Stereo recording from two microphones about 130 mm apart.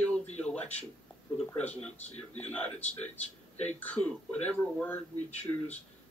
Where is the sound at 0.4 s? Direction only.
10° left (ahead or behind).